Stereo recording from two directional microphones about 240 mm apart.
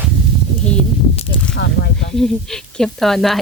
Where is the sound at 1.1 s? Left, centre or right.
Left.